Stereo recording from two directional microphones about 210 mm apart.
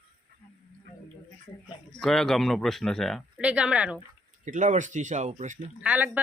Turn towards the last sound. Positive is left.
turn(degrees=-5)  # may be behind; listen again after turning